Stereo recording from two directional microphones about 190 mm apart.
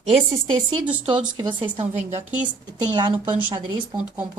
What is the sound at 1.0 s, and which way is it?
Speech, 25° right (ahead or behind).